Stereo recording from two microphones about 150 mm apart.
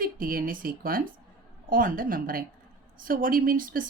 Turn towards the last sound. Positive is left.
turn(degrees=-65)  # may be behind; listen again after turning